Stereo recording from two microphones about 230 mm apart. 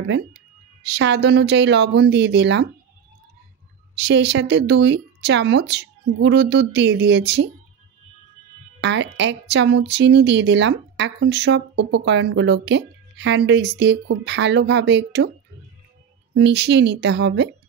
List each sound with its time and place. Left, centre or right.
0.9 s a woman's voice: right
4.0 s a woman's voice: right
8.8 s a woman's voice: right
16.3 s a woman's voice: right